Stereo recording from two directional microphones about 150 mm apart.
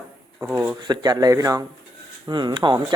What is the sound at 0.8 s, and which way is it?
Speech, 30° right (ahead or behind).